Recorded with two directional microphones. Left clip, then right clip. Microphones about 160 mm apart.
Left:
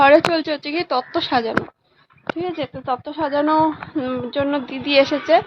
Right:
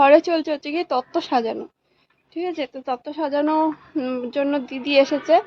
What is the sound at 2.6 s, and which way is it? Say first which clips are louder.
A woman's voice: left 2 dB; 15° right (ahead or behind).